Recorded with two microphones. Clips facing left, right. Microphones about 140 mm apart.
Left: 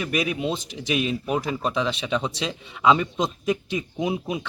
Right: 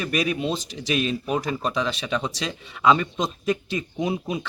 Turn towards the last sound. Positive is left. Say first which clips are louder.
# even
turn(degrees=5)  # may be behind; listen again after turning